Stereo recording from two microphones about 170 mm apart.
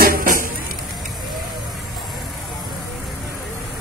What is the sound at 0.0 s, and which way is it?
Music, 60° right (ahead or behind).